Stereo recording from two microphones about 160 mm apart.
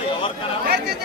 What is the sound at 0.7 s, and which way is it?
Chatter, 90° right.